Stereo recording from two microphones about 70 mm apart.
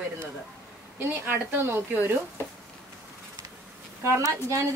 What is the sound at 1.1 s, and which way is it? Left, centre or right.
Speech, right.